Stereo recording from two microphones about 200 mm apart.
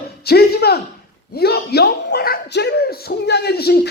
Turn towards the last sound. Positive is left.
turn(degrees=55)  # may be behind; listen again after turning